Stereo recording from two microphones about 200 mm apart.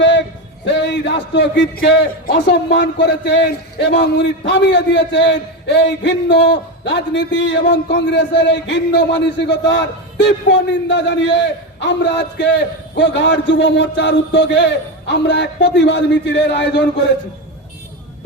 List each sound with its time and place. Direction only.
0.0 s speech: 60° left (ahead or behind)